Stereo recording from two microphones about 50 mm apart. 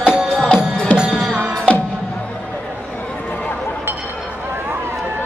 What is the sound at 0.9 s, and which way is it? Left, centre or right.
Music, centre.